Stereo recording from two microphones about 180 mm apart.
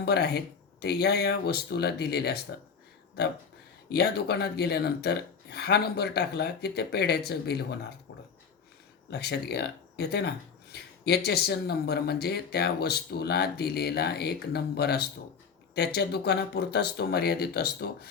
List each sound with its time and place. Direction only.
0.0 s speech: 65° left (ahead or behind)
3.9 s speech: 65° left (ahead or behind)
9.0 s speech: 65° left (ahead or behind)